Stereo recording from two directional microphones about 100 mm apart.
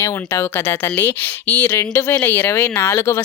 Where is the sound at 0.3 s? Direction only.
25° left (ahead or behind).